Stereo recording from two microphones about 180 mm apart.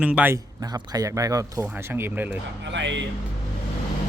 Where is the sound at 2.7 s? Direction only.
85° right.